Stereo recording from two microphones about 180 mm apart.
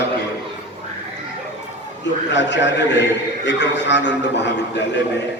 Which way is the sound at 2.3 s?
80° left.